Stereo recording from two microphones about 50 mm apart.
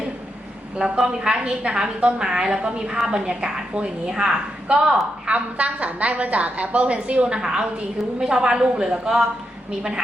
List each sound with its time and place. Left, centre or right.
0.8 s a woman's voice: centre
5.2 s a woman's voice: right